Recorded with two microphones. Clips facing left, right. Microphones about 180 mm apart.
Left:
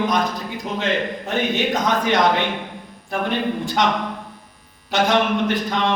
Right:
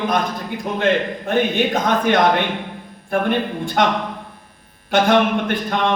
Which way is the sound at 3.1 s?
55° right (ahead or behind).